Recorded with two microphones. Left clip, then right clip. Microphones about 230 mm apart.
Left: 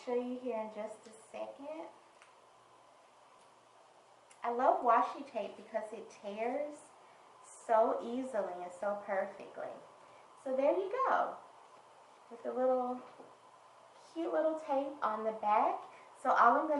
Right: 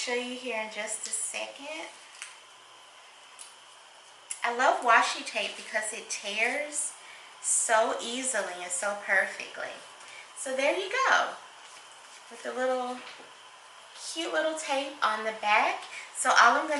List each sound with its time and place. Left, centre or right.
0.0 s a woman's voice: centre
1.6 s a sound: centre
4.4 s a woman's voice: centre
12.4 s a woman's voice: centre